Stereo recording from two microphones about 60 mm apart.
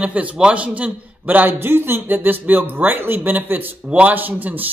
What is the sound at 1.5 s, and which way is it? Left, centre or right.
Speech, right.